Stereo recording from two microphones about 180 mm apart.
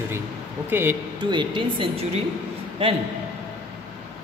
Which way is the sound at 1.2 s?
25° right (ahead or behind).